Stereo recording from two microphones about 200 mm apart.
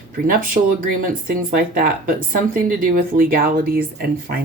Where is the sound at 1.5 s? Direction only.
45° right (ahead or behind).